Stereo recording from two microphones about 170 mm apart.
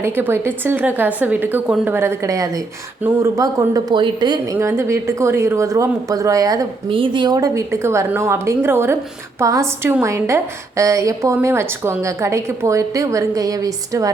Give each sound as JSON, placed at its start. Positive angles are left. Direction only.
{"t": 0.0, "sound": "a woman's voice", "side_deg": -10}
{"t": 4.5, "sound": "a woman's voice", "side_deg": -15}